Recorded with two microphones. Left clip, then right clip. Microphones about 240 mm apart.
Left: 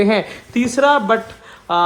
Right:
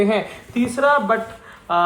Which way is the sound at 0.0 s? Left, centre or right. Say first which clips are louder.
Left 3 dB; left.